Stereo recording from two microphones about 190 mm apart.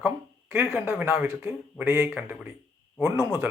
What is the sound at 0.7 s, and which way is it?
Speech, 10° right (ahead or behind).